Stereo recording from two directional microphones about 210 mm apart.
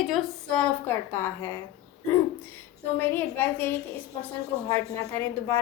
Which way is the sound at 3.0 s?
10° left (ahead or behind).